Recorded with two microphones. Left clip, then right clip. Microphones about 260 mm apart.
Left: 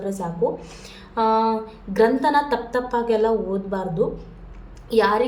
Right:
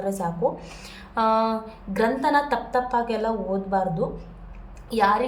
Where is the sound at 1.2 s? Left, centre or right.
Centre.